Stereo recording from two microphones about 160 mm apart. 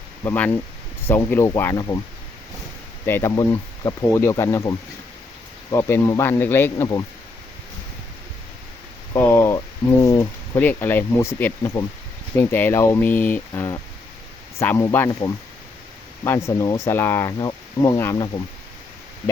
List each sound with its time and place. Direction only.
0.3 s speech: 10° left (ahead or behind)
3.1 s speech: 15° left (ahead or behind)
5.7 s speech: 15° left (ahead or behind)
9.1 s a sound: 15° left (ahead or behind)
10.0 s speech: 20° left (ahead or behind)